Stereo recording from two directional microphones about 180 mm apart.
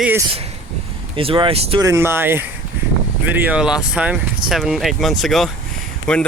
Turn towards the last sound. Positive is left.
turn(degrees=5)  # may be behind; listen again after turning